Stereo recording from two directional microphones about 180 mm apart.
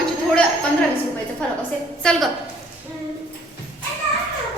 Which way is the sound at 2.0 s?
5° left (ahead or behind).